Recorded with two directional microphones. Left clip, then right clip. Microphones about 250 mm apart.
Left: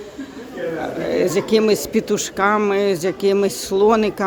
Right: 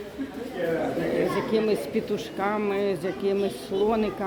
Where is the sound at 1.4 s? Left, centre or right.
Left.